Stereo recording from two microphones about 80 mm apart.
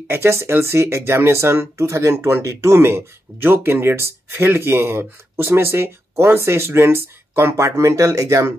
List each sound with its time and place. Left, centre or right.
0.1 s speech: right